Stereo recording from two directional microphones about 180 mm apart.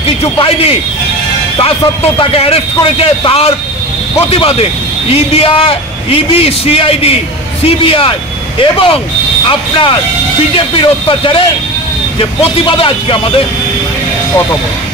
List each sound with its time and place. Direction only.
0.2 s a man's voice: 35° left (ahead or behind)
2.1 s a man's voice: 30° left (ahead or behind)